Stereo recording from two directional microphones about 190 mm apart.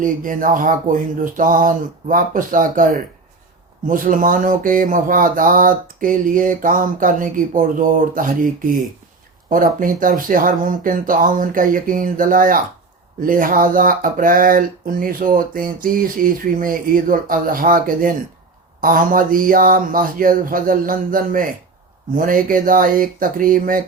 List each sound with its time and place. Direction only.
0.0 s speech: 45° right (ahead or behind)